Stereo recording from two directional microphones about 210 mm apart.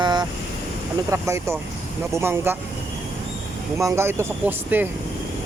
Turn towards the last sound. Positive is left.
turn(degrees=-10)  # may be behind; listen again after turning